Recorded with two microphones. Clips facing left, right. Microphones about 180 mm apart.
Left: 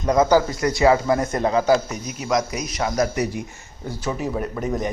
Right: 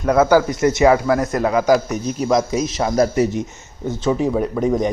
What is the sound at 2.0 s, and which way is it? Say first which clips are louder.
Speech: right 5 dB; 35° right (ahead or behind).